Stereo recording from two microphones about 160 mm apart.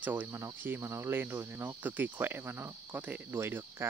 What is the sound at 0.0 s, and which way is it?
Cricket, 10° right (ahead or behind).